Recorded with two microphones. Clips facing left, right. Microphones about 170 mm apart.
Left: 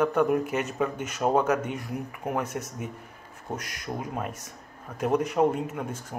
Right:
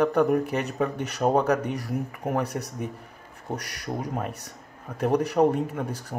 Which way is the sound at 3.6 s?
70° right (ahead or behind).